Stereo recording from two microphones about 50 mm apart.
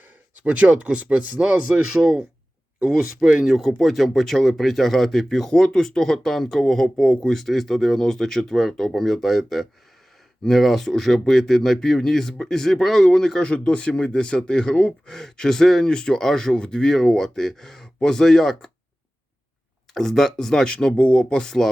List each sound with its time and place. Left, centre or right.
0.3 s speech: right
1.9 s speech: centre
3.5 s speech: centre
15.1 s speech: centre
19.9 s speech: centre
20.7 s speech: left